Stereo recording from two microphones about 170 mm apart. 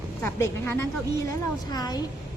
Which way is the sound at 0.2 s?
15° left (ahead or behind).